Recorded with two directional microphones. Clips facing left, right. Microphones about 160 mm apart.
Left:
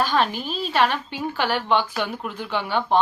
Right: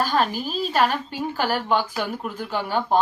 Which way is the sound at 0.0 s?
40° right (ahead or behind).